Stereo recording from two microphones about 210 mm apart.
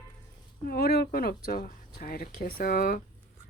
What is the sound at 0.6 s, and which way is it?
Speech, 50° left (ahead or behind).